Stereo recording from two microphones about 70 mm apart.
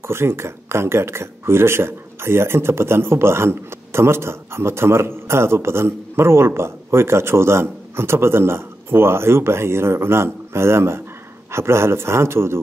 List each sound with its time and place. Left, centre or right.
0.1 s speech: right